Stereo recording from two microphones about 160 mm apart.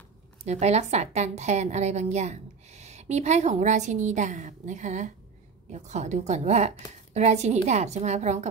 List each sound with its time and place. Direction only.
0.5 s a woman's voice: 45° right (ahead or behind)